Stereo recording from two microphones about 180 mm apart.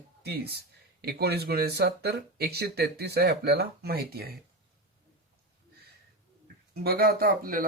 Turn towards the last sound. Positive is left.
turn(degrees=-50)  # may be behind; listen again after turning